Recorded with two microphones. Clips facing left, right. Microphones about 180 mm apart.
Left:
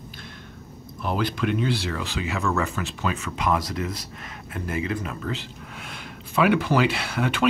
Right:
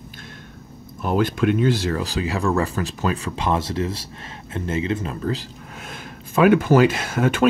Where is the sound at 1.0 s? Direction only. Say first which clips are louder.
Right 5 dB; 45° right (ahead or behind).